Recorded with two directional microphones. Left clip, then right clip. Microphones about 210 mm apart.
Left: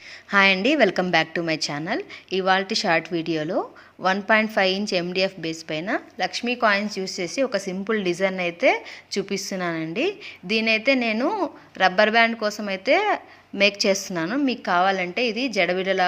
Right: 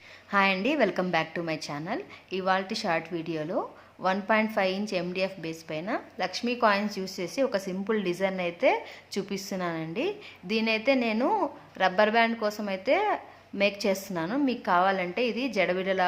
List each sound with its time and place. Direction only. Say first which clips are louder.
0.3 s a woman's voice: left 7 dB; 15° left (ahead or behind)